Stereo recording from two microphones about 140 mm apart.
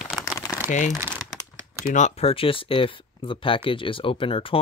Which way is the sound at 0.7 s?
60° left (ahead or behind).